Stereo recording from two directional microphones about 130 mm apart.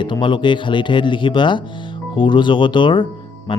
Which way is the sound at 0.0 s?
35° left (ahead or behind).